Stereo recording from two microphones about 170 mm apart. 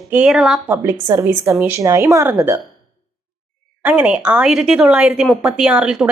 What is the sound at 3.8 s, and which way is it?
Speech, 10° right (ahead or behind).